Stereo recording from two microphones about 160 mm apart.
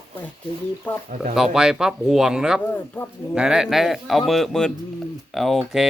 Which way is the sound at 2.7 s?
10° left (ahead or behind).